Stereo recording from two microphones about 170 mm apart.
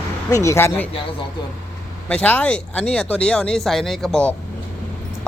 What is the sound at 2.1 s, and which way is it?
Speech, 5° left (ahead or behind).